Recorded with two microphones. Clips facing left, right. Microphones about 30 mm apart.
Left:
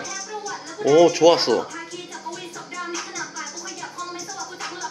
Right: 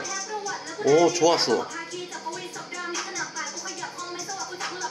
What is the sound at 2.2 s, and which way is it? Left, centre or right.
Music, centre.